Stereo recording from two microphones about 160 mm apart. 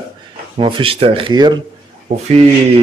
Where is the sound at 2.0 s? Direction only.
45° right (ahead or behind).